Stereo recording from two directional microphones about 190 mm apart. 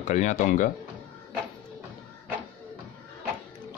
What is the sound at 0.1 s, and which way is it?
Speech, 40° left (ahead or behind).